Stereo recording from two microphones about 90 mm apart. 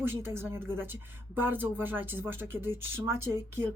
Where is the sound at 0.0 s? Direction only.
25° right (ahead or behind).